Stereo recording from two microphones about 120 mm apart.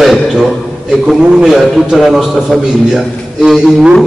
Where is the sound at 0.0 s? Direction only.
Centre (ahead or behind).